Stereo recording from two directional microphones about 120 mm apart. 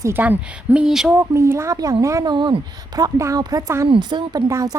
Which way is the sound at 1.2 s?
20° right (ahead or behind).